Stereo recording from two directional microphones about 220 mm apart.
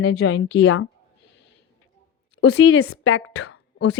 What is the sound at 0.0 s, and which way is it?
Speech, 55° left (ahead or behind).